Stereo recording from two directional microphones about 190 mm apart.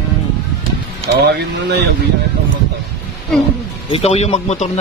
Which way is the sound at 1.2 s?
60° right (ahead or behind).